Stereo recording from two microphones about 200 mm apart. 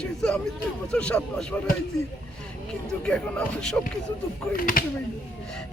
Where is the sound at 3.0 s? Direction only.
5° left (ahead or behind).